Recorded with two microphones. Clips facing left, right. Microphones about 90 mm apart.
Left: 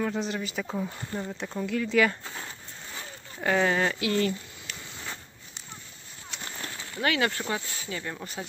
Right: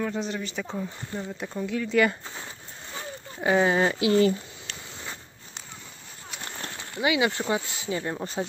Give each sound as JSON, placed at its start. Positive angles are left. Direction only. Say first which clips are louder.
{"t": 0.0, "sound": "speech", "louder": "even", "side_deg": 0}
{"t": 3.3, "sound": "speech", "louder": "right 3 dB", "side_deg": -15}
{"t": 7.0, "sound": "speech", "louder": "right 3 dB", "side_deg": -10}